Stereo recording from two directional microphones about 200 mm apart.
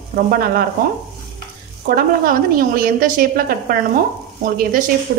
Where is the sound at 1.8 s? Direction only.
45° right (ahead or behind).